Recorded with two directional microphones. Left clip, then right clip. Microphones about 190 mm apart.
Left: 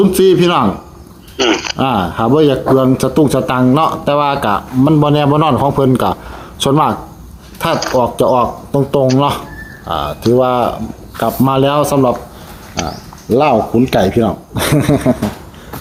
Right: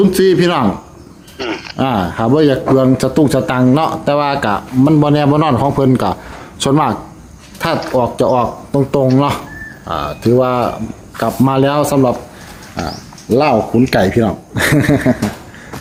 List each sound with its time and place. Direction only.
0.0 s speech: centre (ahead or behind)
1.4 s speech: 40° left (ahead or behind)
1.7 s speech: 5° right (ahead or behind)
13.3 s speech: 5° right (ahead or behind)